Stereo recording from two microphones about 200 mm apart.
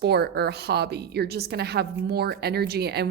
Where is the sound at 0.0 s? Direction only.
55° right (ahead or behind).